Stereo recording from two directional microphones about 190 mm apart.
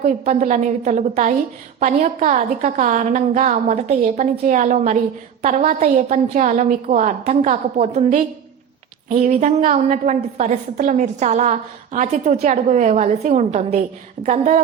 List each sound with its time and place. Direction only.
0.0 s a woman's voice: 40° right (ahead or behind)